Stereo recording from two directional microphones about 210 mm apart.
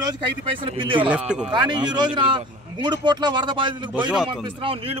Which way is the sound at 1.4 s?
20° right (ahead or behind).